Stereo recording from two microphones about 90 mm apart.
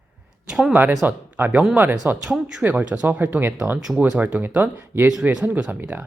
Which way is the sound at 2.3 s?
5° right (ahead or behind).